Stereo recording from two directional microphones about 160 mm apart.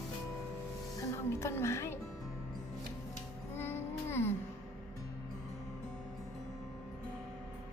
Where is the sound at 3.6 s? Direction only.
15° left (ahead or behind).